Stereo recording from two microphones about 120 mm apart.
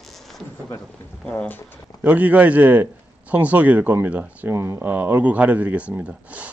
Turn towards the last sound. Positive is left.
turn(degrees=-10)  # may be behind; listen again after turning